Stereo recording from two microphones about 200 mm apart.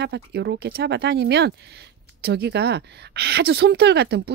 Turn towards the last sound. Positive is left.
turn(degrees=-55)  # may be behind; listen again after turning